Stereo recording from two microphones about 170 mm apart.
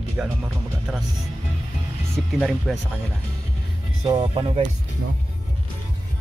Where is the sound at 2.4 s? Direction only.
Centre (ahead or behind).